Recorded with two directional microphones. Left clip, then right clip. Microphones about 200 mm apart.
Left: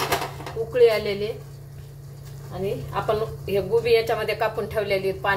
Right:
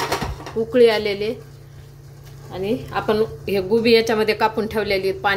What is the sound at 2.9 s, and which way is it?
A woman's voice, 50° right (ahead or behind).